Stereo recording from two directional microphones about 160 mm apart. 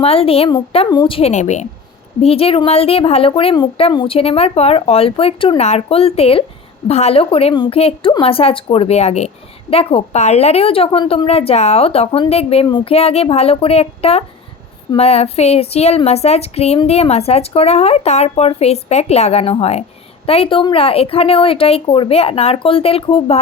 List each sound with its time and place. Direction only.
0.0 s a woman's voice: 40° left (ahead or behind)